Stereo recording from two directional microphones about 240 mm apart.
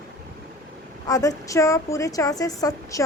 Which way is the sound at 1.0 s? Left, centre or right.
Centre.